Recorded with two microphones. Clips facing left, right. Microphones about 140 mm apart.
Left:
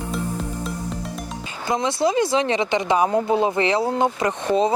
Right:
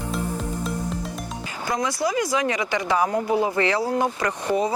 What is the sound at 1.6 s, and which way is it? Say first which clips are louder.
Speech: left 4 dB; 25° left (ahead or behind).